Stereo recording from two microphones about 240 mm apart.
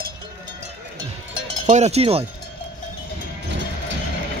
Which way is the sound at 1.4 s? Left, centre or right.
Right.